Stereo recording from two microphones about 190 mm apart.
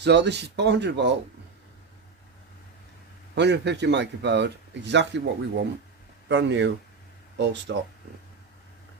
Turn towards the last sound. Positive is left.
turn(degrees=-65)  # may be behind; listen again after turning